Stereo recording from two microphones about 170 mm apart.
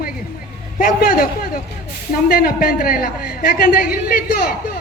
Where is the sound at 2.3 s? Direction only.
60° left (ahead or behind).